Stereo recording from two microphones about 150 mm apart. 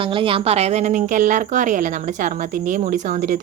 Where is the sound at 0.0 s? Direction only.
35° right (ahead or behind).